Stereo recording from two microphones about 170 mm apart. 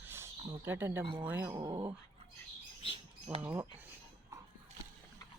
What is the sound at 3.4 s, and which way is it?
Speech, 10° right (ahead or behind).